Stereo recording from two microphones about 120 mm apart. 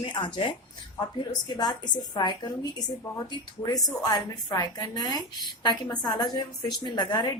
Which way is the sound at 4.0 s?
35° left (ahead or behind).